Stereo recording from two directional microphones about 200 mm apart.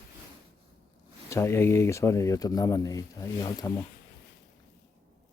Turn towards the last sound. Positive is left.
turn(degrees=15)  # may be behind; listen again after turning